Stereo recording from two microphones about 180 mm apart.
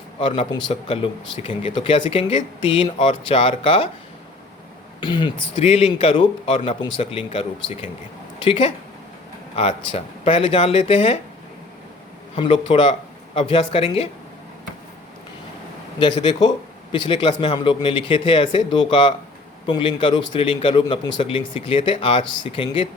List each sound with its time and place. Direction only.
0.2 s speech: 30° left (ahead or behind)
4.9 s speech: 25° left (ahead or behind)
12.4 s speech: 30° left (ahead or behind)
16.0 s speech: 25° left (ahead or behind)